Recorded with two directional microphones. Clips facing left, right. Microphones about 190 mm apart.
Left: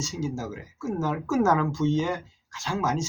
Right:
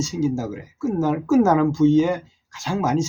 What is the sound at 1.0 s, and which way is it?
Speech, 15° right (ahead or behind).